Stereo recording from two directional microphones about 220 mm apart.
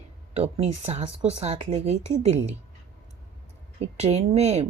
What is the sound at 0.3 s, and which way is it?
Speech, 25° right (ahead or behind).